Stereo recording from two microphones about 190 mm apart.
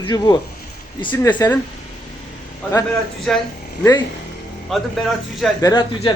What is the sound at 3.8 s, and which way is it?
Speech, 20° left (ahead or behind).